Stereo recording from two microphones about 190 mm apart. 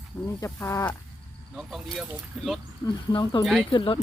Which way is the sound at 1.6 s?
Centre (ahead or behind).